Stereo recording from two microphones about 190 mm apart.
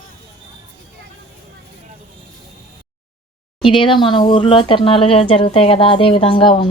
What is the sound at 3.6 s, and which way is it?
Speech, 25° left (ahead or behind).